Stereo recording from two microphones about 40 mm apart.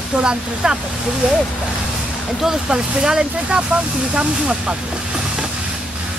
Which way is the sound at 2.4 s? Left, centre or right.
Centre.